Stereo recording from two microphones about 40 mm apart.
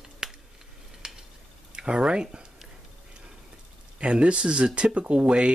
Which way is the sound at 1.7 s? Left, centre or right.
Right.